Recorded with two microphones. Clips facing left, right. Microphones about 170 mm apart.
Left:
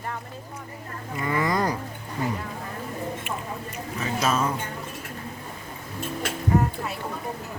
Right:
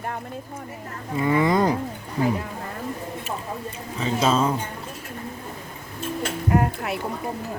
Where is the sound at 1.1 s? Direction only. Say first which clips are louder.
Right 5 dB; 25° right (ahead or behind).